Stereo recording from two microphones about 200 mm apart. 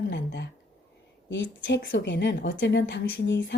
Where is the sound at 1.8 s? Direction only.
45° left (ahead or behind).